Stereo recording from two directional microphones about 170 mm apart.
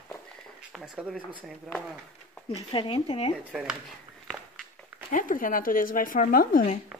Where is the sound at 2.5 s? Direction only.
30° left (ahead or behind).